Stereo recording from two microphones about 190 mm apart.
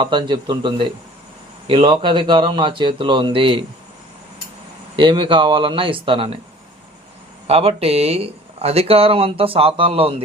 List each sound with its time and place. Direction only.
0.0 s a man's voice: 25° right (ahead or behind)
4.9 s a man's voice: 25° right (ahead or behind)
7.4 s speech: 30° right (ahead or behind)